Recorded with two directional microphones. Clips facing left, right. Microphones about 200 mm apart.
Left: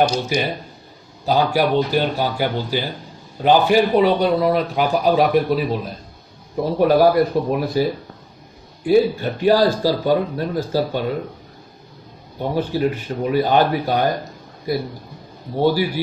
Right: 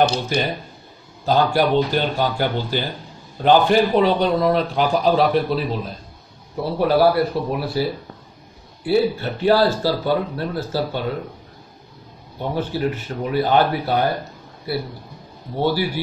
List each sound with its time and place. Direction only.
0.1 s a man's voice: 10° left (ahead or behind)
12.4 s a man's voice: 15° left (ahead or behind)
15.5 s a man's voice: 15° left (ahead or behind)